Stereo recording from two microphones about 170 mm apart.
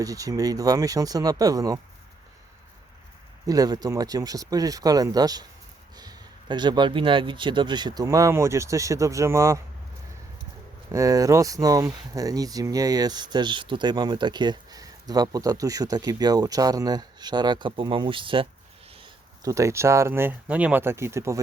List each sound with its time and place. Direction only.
0.0 s speech: 20° right (ahead or behind)
3.4 s speech: 20° right (ahead or behind)
10.9 s speech: 20° right (ahead or behind)
18.9 s a sound: 30° right (ahead or behind)
19.4 s speech: 20° right (ahead or behind)